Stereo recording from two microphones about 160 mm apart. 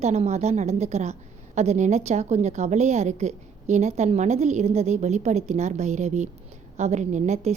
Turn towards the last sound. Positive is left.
turn(degrees=-45)  # may be behind; listen again after turning